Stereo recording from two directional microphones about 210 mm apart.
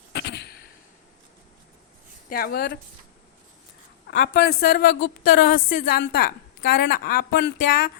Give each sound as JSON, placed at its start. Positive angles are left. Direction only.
{"t": 0.1, "sound": "a sound", "side_deg": 55}
{"t": 2.3, "sound": "a woman's voice", "side_deg": 45}
{"t": 4.1, "sound": "a woman's voice", "side_deg": 45}